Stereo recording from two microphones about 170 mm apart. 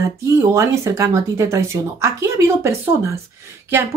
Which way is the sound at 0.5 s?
20° right (ahead or behind).